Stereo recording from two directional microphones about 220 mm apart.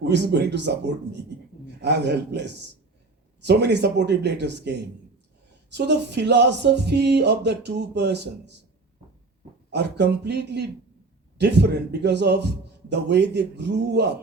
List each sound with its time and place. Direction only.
0.0 s a man's voice: 50° right (ahead or behind)
1.8 s a man's voice: 50° right (ahead or behind)
9.7 s a man's voice: 50° right (ahead or behind)